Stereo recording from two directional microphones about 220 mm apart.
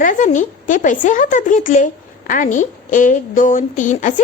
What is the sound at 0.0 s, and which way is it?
Speech, 35° left (ahead or behind).